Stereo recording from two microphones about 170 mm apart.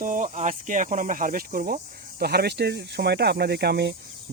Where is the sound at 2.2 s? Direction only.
70° right (ahead or behind).